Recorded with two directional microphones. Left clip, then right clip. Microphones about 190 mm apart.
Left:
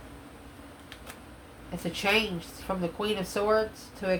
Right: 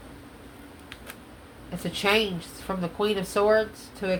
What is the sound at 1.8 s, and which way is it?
A woman's voice, 30° right (ahead or behind).